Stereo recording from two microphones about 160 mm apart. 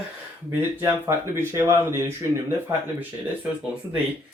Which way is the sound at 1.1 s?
15° right (ahead or behind).